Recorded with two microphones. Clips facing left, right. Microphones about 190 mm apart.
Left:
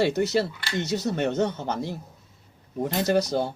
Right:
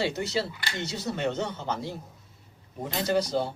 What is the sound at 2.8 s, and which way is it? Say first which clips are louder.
Speech: left 3 dB; 50° left (ahead or behind).